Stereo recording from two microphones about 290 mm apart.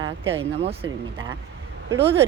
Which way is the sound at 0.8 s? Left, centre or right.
Centre.